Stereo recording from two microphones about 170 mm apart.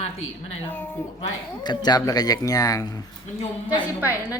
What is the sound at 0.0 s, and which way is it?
Speech, 35° left (ahead or behind).